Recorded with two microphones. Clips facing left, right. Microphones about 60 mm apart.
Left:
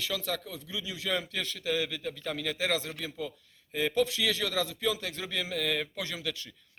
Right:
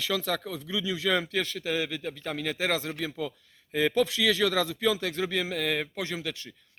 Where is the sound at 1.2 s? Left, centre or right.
Right.